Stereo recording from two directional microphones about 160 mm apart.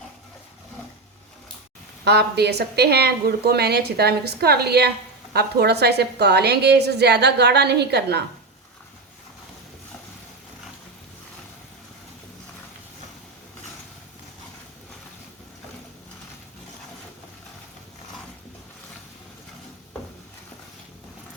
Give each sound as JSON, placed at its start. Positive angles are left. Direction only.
{"t": 2.0, "sound": "a woman's voice", "side_deg": -90}